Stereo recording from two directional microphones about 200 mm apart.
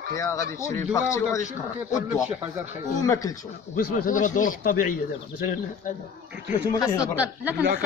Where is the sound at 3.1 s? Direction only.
20° left (ahead or behind).